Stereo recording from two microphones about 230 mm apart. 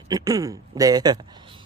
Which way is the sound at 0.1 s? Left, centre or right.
Centre.